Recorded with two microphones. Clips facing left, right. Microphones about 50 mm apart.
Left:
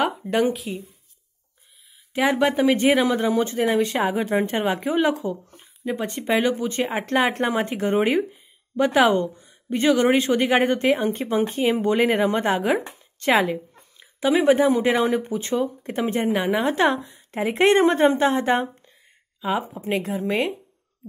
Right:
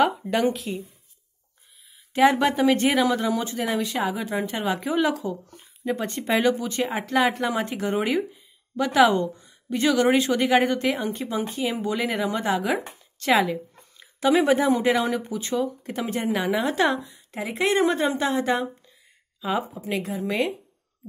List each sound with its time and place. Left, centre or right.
0.3 s speech: centre
0.6 s speech: centre
2.1 s speech: centre; by 5.4 s left
5.5 s a woman's voice: centre
13.9 s speech: centre; by 20.5 s left